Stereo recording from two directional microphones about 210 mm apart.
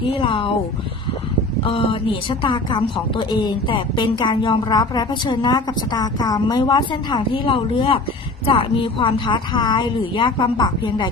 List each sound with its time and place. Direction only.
0.1 s a woman's voice: 25° left (ahead or behind)
1.6 s a woman's voice: 25° left (ahead or behind)